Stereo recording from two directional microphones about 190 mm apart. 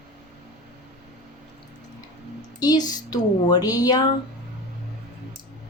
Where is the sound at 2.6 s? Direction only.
20° left (ahead or behind).